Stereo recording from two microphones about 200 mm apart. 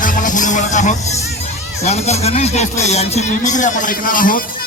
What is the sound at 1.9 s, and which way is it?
Speech, 30° left (ahead or behind).